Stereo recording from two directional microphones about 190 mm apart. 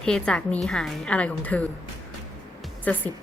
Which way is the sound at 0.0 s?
5° left (ahead or behind).